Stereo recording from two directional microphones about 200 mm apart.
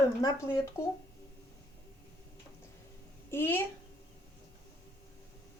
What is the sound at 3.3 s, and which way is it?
Speech, 10° left (ahead or behind).